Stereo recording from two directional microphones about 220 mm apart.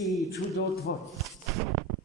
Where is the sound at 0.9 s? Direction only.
45° left (ahead or behind).